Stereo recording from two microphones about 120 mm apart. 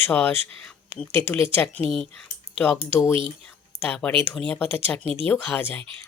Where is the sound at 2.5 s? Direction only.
10° right (ahead or behind).